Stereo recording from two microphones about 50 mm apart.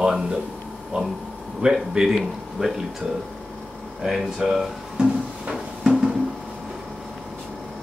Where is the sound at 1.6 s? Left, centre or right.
Centre.